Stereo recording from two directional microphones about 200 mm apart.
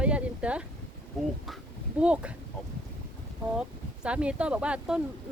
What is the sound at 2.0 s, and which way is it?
Speech, 5° right (ahead or behind).